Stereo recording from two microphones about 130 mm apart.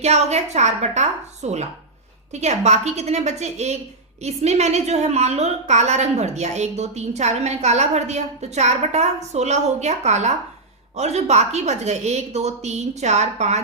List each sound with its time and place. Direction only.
0.0 s a woman's voice: 55° right (ahead or behind)